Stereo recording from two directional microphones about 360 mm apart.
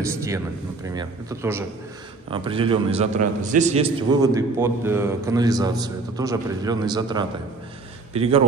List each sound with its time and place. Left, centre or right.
0.8 s a man's voice: centre